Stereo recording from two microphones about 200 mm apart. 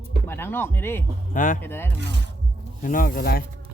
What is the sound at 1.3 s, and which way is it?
Speech, 40° left (ahead or behind).